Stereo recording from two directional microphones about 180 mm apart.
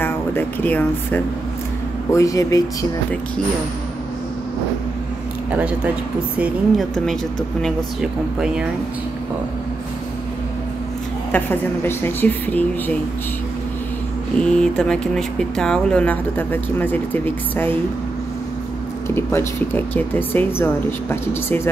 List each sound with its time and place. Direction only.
0.0 s speech: 10° left (ahead or behind)
5.5 s speech: 10° right (ahead or behind)
11.3 s speech: 10° left (ahead or behind)
14.4 s speech: 5° left (ahead or behind)
19.0 s speech: 15° left (ahead or behind)